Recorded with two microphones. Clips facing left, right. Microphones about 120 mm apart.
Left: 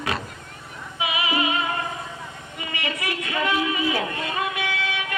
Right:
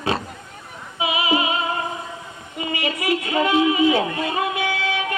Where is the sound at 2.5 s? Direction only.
25° right (ahead or behind).